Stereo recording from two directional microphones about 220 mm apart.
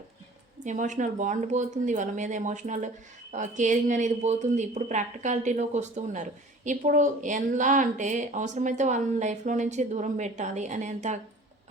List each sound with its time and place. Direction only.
0.6 s speech: 35° right (ahead or behind)